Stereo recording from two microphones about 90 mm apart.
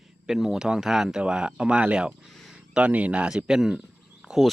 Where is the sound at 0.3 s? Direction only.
5° right (ahead or behind).